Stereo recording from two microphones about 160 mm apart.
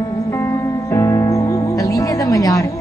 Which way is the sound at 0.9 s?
20° left (ahead or behind).